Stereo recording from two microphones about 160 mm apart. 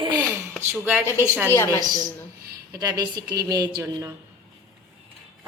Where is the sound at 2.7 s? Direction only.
25° right (ahead or behind).